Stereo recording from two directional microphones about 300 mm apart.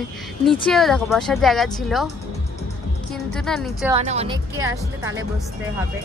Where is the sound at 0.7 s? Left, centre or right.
Centre.